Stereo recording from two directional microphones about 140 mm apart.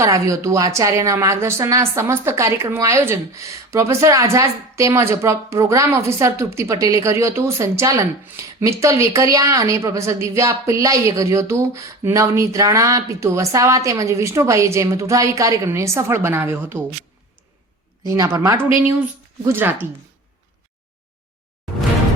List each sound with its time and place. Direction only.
0.0 s speech: 20° right (ahead or behind)
18.2 s speech: 25° right (ahead or behind)